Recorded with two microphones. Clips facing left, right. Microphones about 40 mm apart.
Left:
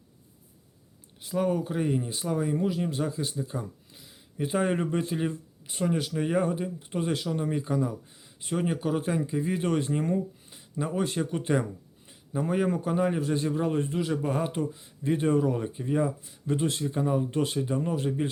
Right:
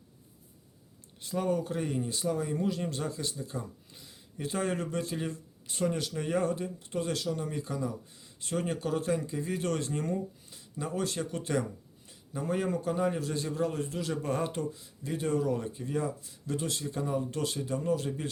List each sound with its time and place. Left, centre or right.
1.2 s a man's voice: centre